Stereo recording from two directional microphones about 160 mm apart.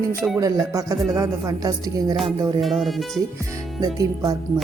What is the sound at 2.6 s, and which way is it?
Speech, centre (ahead or behind).